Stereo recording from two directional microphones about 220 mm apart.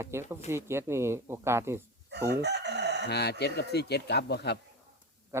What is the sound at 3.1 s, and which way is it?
Speech, 50° left (ahead or behind).